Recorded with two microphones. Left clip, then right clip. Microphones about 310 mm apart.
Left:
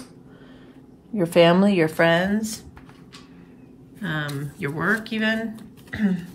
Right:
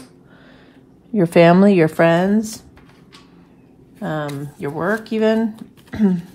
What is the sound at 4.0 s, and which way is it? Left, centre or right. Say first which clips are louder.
Speech: right 4 dB; centre.